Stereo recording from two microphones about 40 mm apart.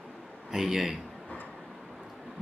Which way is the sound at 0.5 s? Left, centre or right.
Centre.